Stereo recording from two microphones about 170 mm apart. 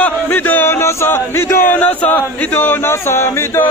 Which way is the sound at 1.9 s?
10° left (ahead or behind).